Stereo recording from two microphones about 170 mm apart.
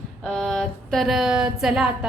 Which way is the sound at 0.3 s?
5° left (ahead or behind).